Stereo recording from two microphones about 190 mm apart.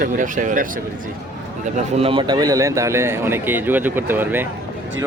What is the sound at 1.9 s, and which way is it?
A man's voice, 30° right (ahead or behind).